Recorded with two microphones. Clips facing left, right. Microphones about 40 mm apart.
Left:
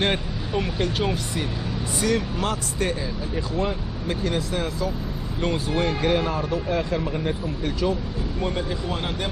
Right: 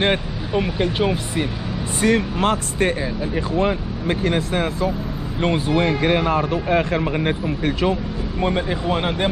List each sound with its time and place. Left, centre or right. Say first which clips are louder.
0.0 s speech: right 4 dB; centre
2.0 s speech: right 6 dB; right